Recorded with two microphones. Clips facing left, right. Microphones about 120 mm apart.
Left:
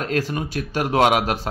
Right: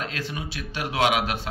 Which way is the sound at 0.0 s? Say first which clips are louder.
Left 8 dB; 45° left (ahead or behind).